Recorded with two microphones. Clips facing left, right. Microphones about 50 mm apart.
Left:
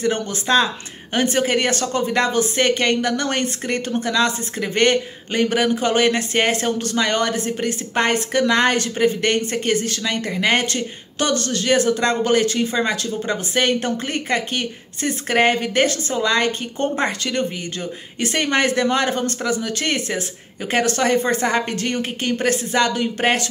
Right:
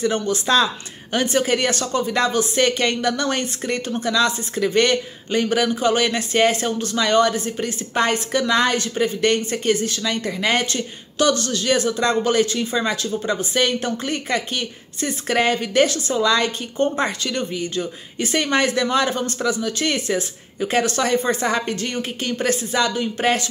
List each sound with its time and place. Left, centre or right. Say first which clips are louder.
0.0 s a woman's voice: right 1 dB; left